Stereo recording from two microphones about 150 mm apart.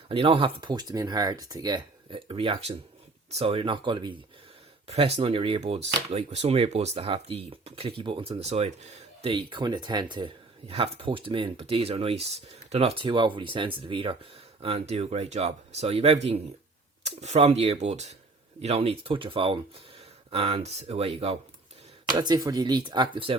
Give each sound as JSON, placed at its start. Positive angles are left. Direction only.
{"t": 0.1, "sound": "speech", "side_deg": -35}
{"t": 4.9, "sound": "speech", "side_deg": -45}
{"t": 9.2, "sound": "speech", "side_deg": -35}
{"t": 22.0, "sound": "speech", "side_deg": -30}